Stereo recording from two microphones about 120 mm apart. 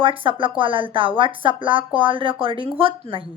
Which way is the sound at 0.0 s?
45° right (ahead or behind).